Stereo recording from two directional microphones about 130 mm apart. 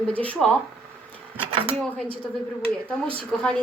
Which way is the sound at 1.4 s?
45° right (ahead or behind).